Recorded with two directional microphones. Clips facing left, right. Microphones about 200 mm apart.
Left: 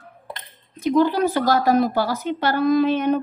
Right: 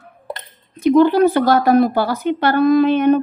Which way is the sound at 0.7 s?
60° right (ahead or behind).